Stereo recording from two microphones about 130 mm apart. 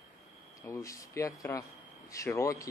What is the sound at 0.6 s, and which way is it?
Speech, 25° left (ahead or behind).